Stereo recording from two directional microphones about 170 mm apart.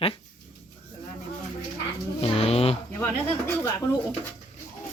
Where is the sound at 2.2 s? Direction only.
35° left (ahead or behind).